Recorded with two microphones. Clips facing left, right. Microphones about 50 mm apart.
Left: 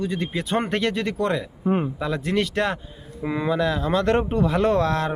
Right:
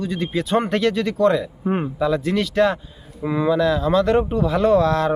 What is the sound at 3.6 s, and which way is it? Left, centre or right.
Speech, left.